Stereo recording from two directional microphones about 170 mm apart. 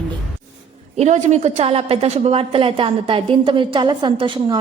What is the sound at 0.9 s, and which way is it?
A woman's voice, 45° right (ahead or behind).